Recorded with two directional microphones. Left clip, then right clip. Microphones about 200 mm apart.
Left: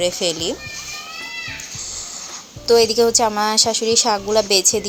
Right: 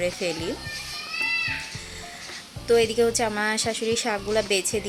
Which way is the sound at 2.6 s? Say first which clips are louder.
Left 6 dB; 10° left (ahead or behind).